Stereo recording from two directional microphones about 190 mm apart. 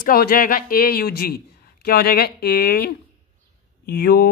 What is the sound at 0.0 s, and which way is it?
A man's voice, 50° left (ahead or behind).